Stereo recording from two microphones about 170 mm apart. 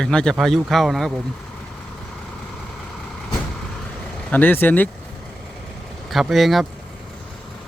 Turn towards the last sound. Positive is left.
turn(degrees=0)  # may be behind; listen again after turning